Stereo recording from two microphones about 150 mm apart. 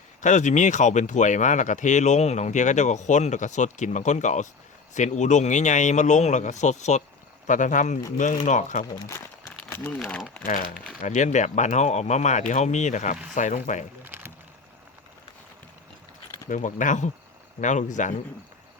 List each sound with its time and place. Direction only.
0.2 s speech: 55° left (ahead or behind)
9.6 s a sound: 10° left (ahead or behind)
10.0 s speech: centre (ahead or behind)
10.4 s speech: 60° left (ahead or behind)
14.0 s a sound: 15° right (ahead or behind)
16.5 s speech: 60° left (ahead or behind)